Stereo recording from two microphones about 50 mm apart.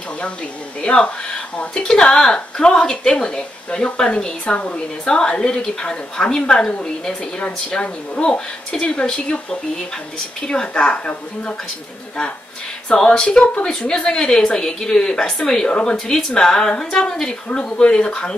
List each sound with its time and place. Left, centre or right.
0.8 s a woman's voice: centre
12.9 s a woman's voice: centre